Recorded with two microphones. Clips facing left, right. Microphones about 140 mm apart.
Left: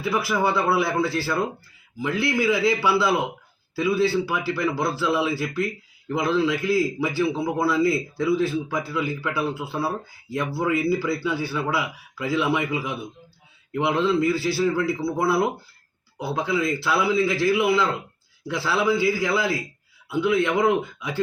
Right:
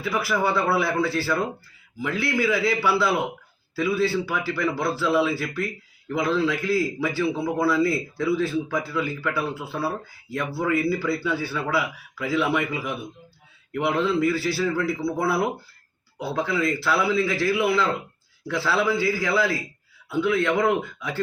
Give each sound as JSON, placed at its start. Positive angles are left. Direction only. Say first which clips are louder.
{"t": 0.0, "sound": "a man's voice", "louder": "left 1 dB", "side_deg": 15}